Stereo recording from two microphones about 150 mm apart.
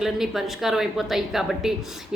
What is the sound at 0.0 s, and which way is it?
A woman's voice, centre (ahead or behind).